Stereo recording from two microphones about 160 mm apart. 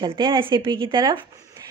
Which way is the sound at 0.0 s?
30° right (ahead or behind).